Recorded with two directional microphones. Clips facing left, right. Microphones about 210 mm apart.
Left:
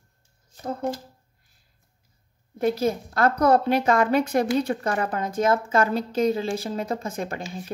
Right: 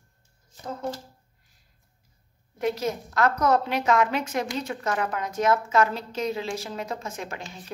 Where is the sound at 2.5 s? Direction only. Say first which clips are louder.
Left 4 dB; 30° left (ahead or behind).